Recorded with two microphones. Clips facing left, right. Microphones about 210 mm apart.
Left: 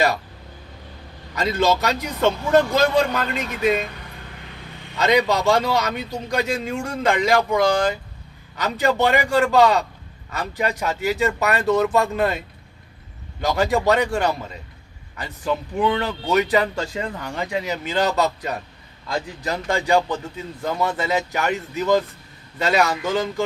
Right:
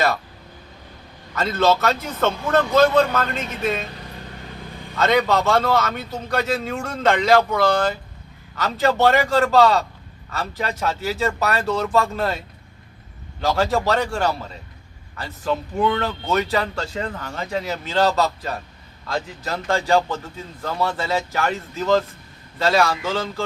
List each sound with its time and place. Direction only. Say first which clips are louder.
1.4 s a man's voice: right 1 dB; 15° left (ahead or behind)
5.0 s a man's voice: left 1 dB; 15° left (ahead or behind)
13.4 s a man's voice: left 1 dB; 15° left (ahead or behind)